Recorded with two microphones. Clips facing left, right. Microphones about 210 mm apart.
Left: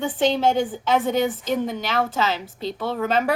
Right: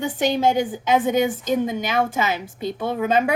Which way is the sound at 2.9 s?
15° right (ahead or behind).